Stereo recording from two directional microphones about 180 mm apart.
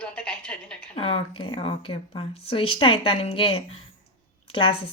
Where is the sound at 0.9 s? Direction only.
30° left (ahead or behind).